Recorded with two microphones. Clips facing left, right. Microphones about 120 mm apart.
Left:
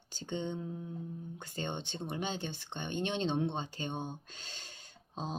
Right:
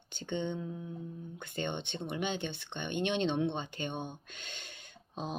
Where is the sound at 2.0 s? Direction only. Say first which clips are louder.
Right 3 dB; 40° left (ahead or behind).